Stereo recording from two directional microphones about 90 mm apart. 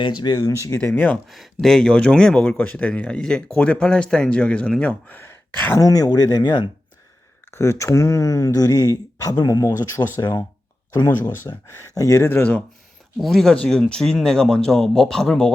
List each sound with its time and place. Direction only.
0.0 s speech: 50° left (ahead or behind); by 0.8 s 35° left (ahead or behind)
0.8 s speech: 15° left (ahead or behind)
1.3 s speech: centre (ahead or behind); by 5.8 s 25° left (ahead or behind)
5.8 s speech: 45° left (ahead or behind)
7.5 s speech: 30° left (ahead or behind)
11.5 s speech: 50° left (ahead or behind)
11.9 s speech: 35° left (ahead or behind)
12.3 s speech: 20° left (ahead or behind)
13.1 s speech: 5° left (ahead or behind)